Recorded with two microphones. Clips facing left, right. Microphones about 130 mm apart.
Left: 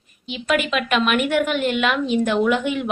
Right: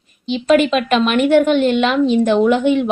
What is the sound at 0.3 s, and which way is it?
A woman's voice, 30° right (ahead or behind).